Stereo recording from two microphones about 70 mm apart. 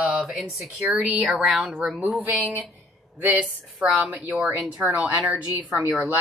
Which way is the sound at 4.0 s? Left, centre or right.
Right.